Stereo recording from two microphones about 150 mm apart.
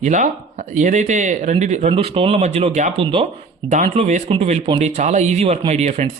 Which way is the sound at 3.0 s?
35° right (ahead or behind).